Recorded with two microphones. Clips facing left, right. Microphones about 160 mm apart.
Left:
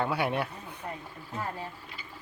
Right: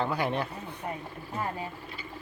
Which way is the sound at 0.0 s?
5° left (ahead or behind).